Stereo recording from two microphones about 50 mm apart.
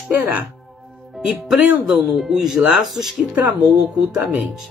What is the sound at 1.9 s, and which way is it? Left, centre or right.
Speech, centre.